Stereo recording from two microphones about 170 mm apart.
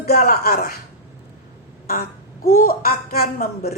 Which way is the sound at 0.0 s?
65° left (ahead or behind).